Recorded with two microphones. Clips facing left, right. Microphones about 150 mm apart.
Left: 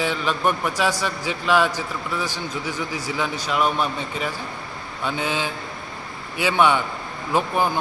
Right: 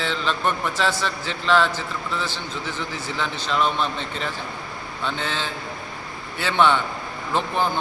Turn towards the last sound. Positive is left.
turn(degrees=10)  # may be behind; listen again after turning